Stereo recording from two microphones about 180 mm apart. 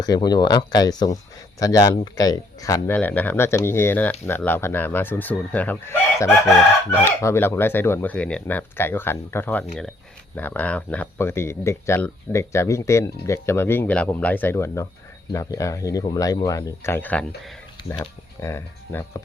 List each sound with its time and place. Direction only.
0.0 s speech: 20° left (ahead or behind)
17.9 s speech: 20° left (ahead or behind)